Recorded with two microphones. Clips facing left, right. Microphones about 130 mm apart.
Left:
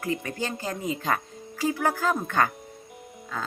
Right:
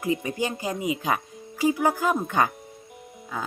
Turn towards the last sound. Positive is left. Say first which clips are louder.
# right 1 dB
turn(degrees=-15)  # may be behind; listen again after turning